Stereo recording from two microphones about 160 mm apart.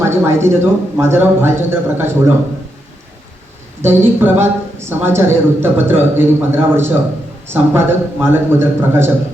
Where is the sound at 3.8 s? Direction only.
15° right (ahead or behind).